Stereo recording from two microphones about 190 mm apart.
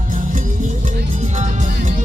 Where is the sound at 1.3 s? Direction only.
40° right (ahead or behind).